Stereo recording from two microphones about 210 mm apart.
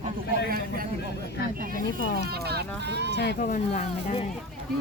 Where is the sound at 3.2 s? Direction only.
55° left (ahead or behind).